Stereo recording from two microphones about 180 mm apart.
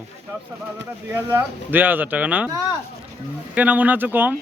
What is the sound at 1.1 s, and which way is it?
Speech, 10° right (ahead or behind).